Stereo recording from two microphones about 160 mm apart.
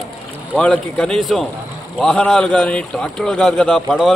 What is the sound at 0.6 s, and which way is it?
A man's voice, 5° left (ahead or behind).